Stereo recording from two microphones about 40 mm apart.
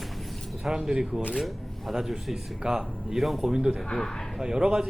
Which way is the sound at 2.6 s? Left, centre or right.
Centre.